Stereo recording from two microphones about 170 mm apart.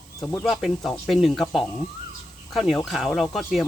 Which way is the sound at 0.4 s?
Centre (ahead or behind).